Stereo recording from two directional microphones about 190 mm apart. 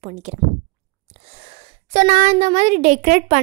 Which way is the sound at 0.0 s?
40° right (ahead or behind).